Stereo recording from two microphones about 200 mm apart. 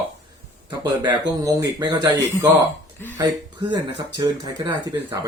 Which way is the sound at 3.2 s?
20° right (ahead or behind).